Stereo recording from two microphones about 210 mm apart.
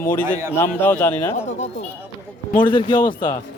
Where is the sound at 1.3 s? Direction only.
35° left (ahead or behind).